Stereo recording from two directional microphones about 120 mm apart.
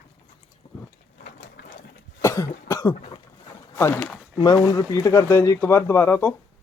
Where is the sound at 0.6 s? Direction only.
60° left (ahead or behind).